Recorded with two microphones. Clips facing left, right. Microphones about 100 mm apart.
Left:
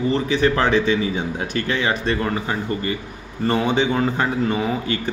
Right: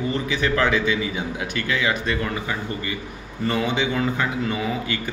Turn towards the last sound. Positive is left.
turn(degrees=35)  # may be behind; listen again after turning